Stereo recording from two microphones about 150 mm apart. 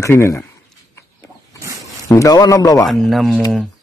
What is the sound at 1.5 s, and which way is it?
Pig, 20° right (ahead or behind).